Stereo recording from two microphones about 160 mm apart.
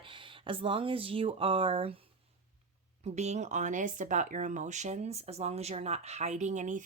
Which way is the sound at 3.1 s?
45° right (ahead or behind).